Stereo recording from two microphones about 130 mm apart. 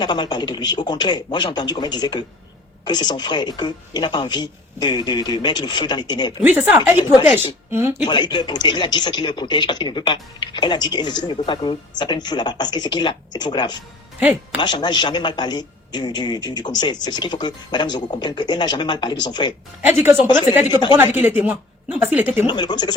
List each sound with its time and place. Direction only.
0.0 s speech: 35° left (ahead or behind)
6.5 s speech: 15° right (ahead or behind)
8.0 s speech: 35° left (ahead or behind)
19.8 s speech: 15° right (ahead or behind)
21.2 s speech: 15° right (ahead or behind)
22.4 s speech: 35° left (ahead or behind)